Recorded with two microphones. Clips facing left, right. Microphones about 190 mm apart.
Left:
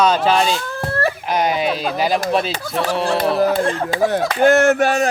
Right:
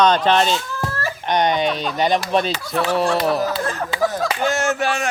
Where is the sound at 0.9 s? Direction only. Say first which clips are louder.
Left 11 dB; 60° left (ahead or behind).